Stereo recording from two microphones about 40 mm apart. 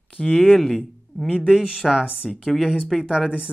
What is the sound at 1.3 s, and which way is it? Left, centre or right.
Speech, centre.